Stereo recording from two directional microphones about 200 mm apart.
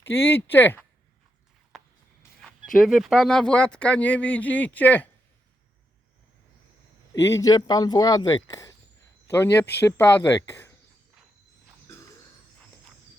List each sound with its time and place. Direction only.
0.0 s speech: 10° left (ahead or behind)
1.7 s a sound: centre (ahead or behind)
2.7 s speech: centre (ahead or behind)
7.1 s speech: 15° left (ahead or behind)